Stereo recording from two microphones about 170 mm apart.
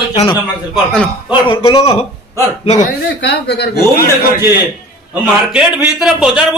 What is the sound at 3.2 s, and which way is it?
A man's voice, 80° left.